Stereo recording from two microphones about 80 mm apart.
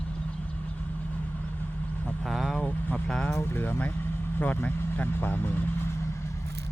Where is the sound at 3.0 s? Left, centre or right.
Centre.